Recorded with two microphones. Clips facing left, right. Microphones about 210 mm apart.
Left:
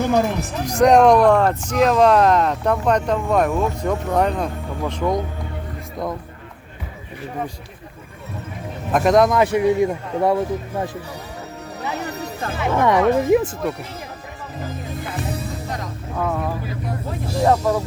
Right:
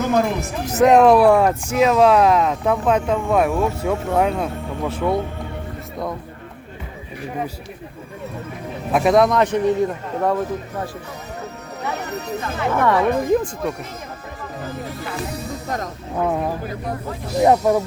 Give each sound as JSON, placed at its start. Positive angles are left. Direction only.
{"t": 0.6, "sound": "speech", "side_deg": -5}
{"t": 8.9, "sound": "speech", "side_deg": -5}
{"t": 12.5, "sound": "speech", "side_deg": 15}
{"t": 16.2, "sound": "speech", "side_deg": -20}